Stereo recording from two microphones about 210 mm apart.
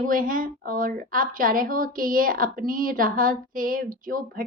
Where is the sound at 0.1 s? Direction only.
40° right (ahead or behind).